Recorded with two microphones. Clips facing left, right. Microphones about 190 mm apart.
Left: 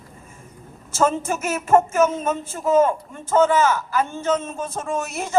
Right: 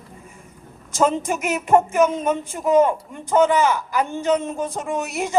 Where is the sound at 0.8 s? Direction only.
15° right (ahead or behind).